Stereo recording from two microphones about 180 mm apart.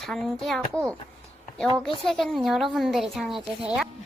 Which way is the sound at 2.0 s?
Centre (ahead or behind).